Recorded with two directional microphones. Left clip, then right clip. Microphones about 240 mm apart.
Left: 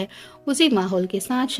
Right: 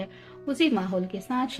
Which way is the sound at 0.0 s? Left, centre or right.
Left.